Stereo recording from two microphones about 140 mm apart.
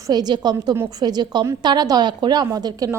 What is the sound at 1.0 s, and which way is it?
A woman's voice, 30° right (ahead or behind).